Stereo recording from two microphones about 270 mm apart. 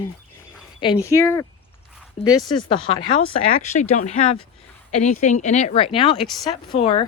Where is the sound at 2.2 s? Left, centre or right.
Left.